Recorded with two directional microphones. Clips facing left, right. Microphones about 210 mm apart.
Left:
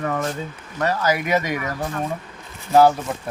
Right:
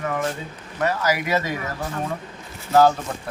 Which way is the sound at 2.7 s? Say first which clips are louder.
Left 2 dB; 15° left (ahead or behind).